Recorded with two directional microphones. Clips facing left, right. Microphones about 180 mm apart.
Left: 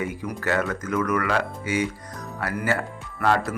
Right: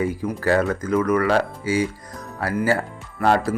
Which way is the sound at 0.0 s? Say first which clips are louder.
Right 5 dB; 35° right (ahead or behind).